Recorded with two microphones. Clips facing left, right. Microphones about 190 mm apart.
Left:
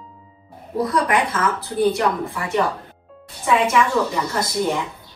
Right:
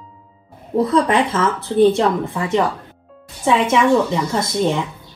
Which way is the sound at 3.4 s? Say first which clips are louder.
Right 2 dB; 25° right (ahead or behind).